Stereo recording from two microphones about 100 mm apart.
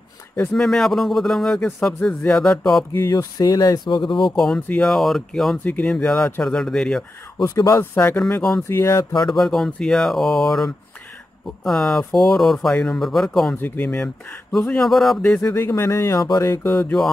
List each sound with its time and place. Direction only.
0.6 s speech: 5° left (ahead or behind)
2.9 s speech: 25° left (ahead or behind)
3.2 s speech: 40° left (ahead or behind)
4.2 s speech: 5° left (ahead or behind)
4.6 s speech: 15° left (ahead or behind)
4.8 s speech: centre (ahead or behind)
5.6 s speech: 15° left (ahead or behind)
7.4 s speech: 30° left (ahead or behind)
8.4 s speech: 5° left (ahead or behind)
8.6 s speech: 25° left (ahead or behind)
9.3 s speech: 5° left (ahead or behind)
13.6 s speech: 20° left (ahead or behind)
15.5 s speech: 25° left (ahead or behind)